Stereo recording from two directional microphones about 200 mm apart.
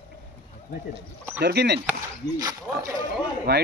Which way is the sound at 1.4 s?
55° right (ahead or behind).